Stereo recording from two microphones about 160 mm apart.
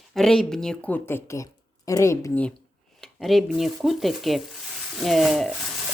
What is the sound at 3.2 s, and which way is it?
Speech, centre (ahead or behind).